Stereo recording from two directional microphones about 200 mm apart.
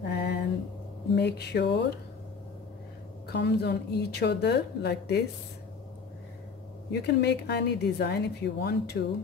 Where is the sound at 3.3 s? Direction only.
55° left (ahead or behind).